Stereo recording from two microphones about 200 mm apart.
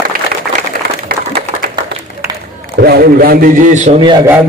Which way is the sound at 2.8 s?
50° right (ahead or behind).